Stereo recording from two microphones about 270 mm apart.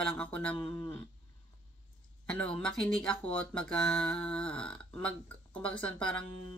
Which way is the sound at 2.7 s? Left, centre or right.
Centre.